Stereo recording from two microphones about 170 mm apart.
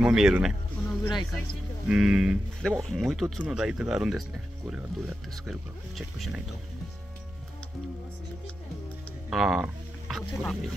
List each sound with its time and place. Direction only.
0.0 s speech: 5° right (ahead or behind)
0.8 s speech: 20° left (ahead or behind)
1.9 s speech: 5° right (ahead or behind)
9.3 s speech: centre (ahead or behind)